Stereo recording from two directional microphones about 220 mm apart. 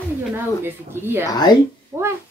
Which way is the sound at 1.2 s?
20° left (ahead or behind).